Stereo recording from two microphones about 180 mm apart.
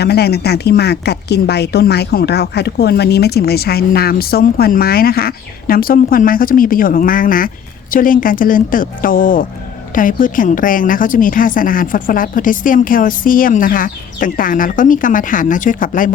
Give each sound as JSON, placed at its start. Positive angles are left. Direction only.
{"t": 0.0, "sound": "a woman's voice", "side_deg": 65}